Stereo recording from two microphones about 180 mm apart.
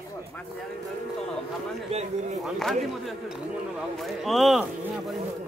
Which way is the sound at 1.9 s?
40° right (ahead or behind).